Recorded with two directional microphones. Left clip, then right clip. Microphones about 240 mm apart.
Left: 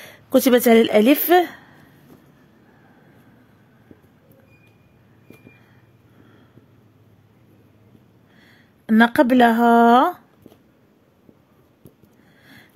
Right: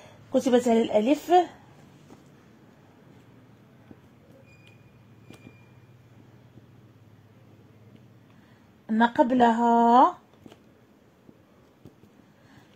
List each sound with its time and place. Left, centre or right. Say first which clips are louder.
0.3 s speech: left 8 dB; left
8.8 s speech: left 6 dB; left